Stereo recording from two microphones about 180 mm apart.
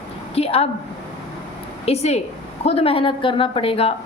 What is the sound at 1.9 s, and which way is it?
A woman's voice, 35° left (ahead or behind).